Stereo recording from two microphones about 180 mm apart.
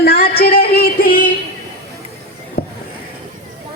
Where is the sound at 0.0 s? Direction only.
60° left (ahead or behind).